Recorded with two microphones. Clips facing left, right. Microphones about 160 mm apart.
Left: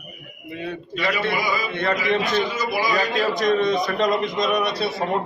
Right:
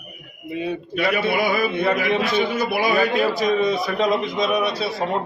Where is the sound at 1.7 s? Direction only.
10° right (ahead or behind).